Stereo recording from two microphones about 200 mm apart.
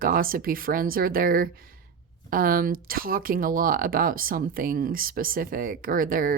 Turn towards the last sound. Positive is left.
turn(degrees=-45)  # may be behind; listen again after turning